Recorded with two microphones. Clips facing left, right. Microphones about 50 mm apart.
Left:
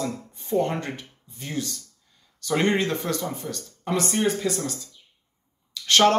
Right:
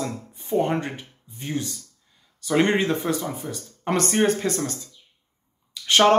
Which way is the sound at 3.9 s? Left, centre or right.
Right.